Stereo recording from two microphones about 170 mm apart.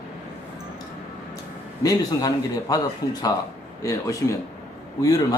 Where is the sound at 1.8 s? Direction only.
20° left (ahead or behind).